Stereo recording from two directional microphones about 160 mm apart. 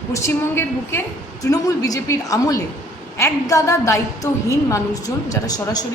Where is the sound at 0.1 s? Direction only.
20° left (ahead or behind).